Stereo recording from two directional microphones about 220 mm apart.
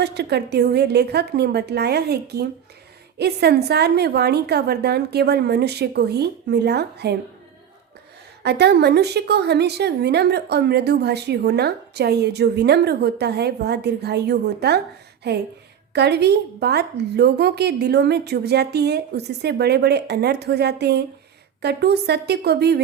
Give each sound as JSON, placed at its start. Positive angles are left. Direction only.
{"t": 0.0, "sound": "a woman's voice", "side_deg": -50}
{"t": 8.4, "sound": "a woman's voice", "side_deg": -50}